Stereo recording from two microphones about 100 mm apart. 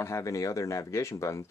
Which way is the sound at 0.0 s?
30° left (ahead or behind).